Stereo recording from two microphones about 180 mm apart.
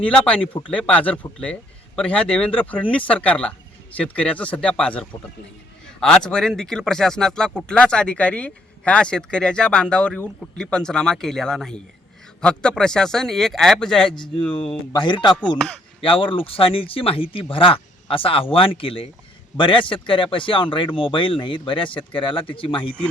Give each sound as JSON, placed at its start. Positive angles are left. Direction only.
{"t": 0.0, "sound": "speech", "side_deg": 5}
{"t": 14.5, "sound": "speech", "side_deg": 30}
{"t": 15.5, "sound": "speech", "side_deg": 0}
{"t": 16.0, "sound": "speech", "side_deg": 30}